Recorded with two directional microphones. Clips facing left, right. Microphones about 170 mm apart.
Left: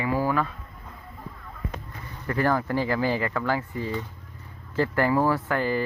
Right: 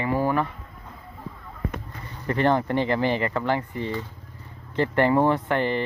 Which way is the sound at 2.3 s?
25° right (ahead or behind).